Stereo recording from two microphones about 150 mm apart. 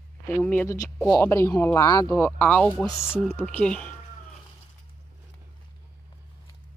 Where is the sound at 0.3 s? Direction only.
10° left (ahead or behind).